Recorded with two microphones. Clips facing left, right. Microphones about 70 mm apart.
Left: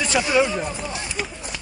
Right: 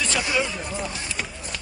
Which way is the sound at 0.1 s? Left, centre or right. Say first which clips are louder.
Left 8 dB; centre.